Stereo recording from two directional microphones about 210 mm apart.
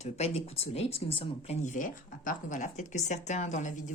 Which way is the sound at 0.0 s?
30° left (ahead or behind).